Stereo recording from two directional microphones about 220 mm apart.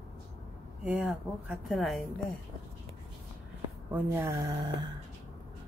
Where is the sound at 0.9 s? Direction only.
5° right (ahead or behind).